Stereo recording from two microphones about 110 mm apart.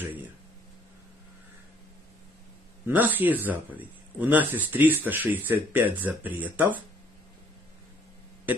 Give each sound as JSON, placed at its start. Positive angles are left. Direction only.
{"t": 2.9, "sound": "speech", "side_deg": -15}